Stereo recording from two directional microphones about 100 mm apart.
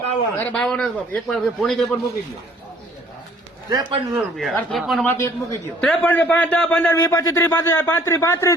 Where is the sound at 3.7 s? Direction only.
40° right (ahead or behind).